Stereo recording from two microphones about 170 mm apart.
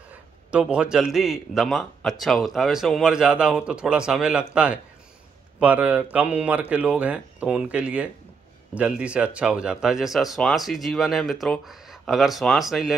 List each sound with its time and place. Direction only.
0.1 s a man's voice: 5° right (ahead or behind)